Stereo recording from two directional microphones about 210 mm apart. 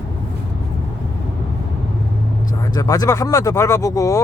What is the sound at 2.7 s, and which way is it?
Speech, 20° left (ahead or behind).